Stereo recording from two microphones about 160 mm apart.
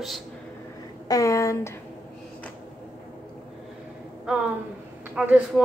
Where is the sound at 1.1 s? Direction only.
20° left (ahead or behind).